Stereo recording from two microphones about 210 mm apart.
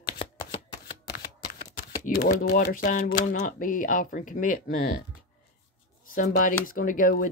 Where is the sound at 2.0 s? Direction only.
45° left (ahead or behind).